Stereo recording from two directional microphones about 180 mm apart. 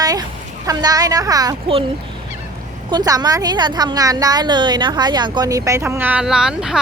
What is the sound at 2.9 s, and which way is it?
A woman's voice, 20° right (ahead or behind).